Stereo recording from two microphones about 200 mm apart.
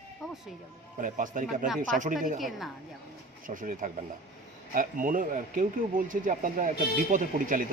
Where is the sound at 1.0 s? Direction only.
40° right (ahead or behind).